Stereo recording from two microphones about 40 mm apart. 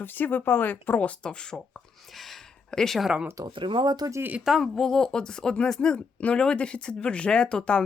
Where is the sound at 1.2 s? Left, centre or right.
Left.